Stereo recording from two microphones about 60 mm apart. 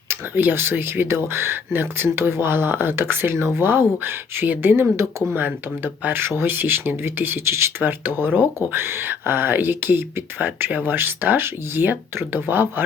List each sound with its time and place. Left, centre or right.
0.1 s speech: right
7.8 s speech: right